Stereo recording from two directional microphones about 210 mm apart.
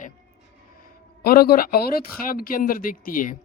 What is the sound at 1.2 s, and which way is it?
Speech, 45° left (ahead or behind).